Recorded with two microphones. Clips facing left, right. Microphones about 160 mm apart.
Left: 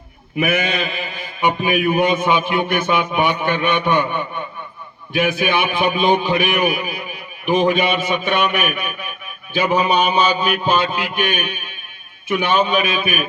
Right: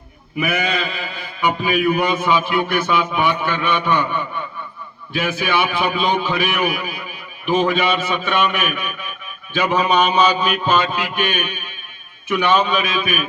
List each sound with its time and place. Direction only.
0.4 s mantra: 20° left (ahead or behind)
1.6 s a man's voice: 20° left (ahead or behind)